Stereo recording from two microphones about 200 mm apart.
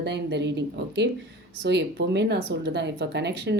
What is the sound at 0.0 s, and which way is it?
Speech, 55° right (ahead or behind).